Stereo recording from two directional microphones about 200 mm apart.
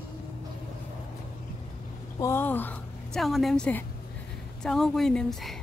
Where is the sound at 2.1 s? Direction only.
15° left (ahead or behind).